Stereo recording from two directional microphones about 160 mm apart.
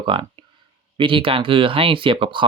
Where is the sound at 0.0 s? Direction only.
30° right (ahead or behind).